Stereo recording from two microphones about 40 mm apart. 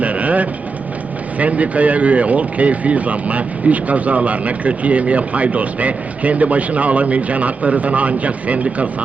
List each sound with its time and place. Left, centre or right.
0.0 s train: right
1.4 s speech: right